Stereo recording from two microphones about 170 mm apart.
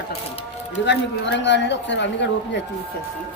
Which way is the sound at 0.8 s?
90° left.